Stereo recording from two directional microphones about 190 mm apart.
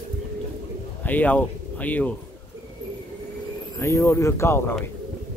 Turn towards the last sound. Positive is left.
turn(degrees=15)  # may be behind; listen again after turning